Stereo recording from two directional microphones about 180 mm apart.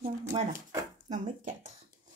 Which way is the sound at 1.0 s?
50° right (ahead or behind).